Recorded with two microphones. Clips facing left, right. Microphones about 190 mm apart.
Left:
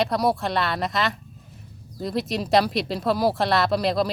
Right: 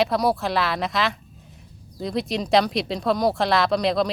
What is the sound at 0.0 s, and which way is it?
Speech, centre (ahead or behind).